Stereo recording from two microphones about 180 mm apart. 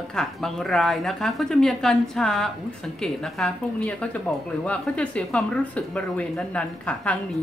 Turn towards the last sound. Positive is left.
turn(degrees=5)  # may be behind; listen again after turning